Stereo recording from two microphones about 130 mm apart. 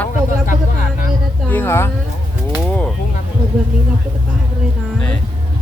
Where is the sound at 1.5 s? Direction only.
15° left (ahead or behind).